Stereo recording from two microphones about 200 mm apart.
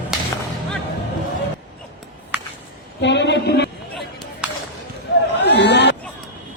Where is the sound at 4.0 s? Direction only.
Centre (ahead or behind).